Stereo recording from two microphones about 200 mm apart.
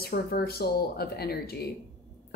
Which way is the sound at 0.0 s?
50° left (ahead or behind).